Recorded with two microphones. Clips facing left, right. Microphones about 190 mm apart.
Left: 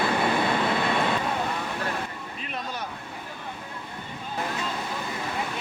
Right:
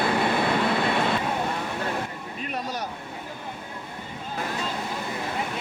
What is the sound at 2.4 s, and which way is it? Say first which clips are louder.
Vehicle: right 4 dB; 40° right (ahead or behind).